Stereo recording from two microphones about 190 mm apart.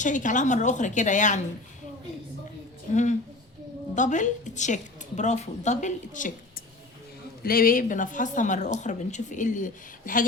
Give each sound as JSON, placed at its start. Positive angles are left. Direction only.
{"t": 0.0, "sound": "speech", "side_deg": 40}
{"t": 2.9, "sound": "speech", "side_deg": 40}
{"t": 7.4, "sound": "speech", "side_deg": 50}